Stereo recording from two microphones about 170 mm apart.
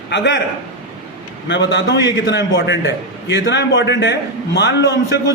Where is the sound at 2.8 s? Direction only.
20° right (ahead or behind).